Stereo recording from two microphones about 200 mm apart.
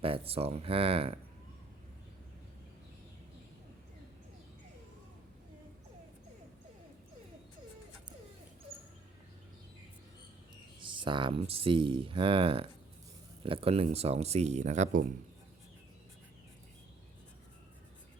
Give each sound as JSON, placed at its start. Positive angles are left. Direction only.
{"t": 0.0, "sound": "speech", "side_deg": -30}
{"t": 10.8, "sound": "speech", "side_deg": -25}